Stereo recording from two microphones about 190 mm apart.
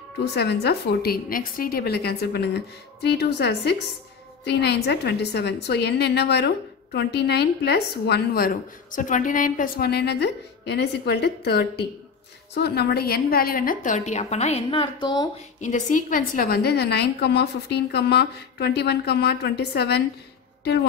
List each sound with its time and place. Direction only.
0.2 s a woman's voice: 60° left (ahead or behind); by 15.4 s 25° left (ahead or behind)
15.6 s a woman's voice: 40° left (ahead or behind); by 20.0 s 60° left (ahead or behind)